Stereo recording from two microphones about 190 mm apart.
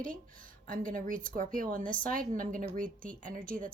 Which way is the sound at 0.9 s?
45° right (ahead or behind).